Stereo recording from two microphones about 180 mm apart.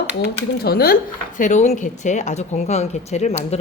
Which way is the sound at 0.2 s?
60° left (ahead or behind).